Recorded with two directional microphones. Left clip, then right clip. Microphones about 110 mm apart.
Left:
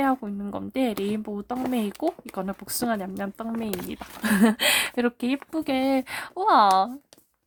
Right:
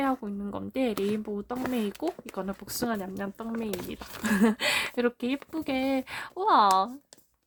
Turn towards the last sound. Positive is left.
turn(degrees=35)  # may be behind; listen again after turning